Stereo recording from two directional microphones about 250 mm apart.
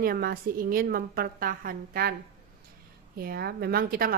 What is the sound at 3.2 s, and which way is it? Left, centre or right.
Speech, right.